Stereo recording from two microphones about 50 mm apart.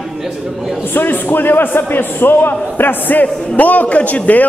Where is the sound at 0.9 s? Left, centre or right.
Left.